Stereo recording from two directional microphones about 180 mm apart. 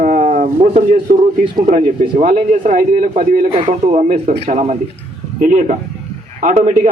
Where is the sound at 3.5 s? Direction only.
35° right (ahead or behind).